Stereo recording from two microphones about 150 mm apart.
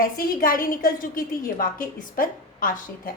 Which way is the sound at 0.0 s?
70° left (ahead or behind).